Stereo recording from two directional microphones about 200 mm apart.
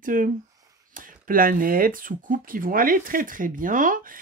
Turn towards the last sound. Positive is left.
turn(degrees=-40)  # may be behind; listen again after turning